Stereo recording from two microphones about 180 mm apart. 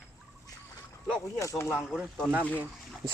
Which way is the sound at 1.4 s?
15° left (ahead or behind).